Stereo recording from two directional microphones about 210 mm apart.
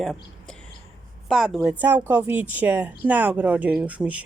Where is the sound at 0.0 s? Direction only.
Centre (ahead or behind).